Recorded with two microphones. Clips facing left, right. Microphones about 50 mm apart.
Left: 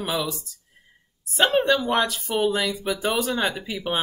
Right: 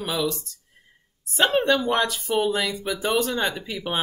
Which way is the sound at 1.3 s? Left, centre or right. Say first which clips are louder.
Even; centre.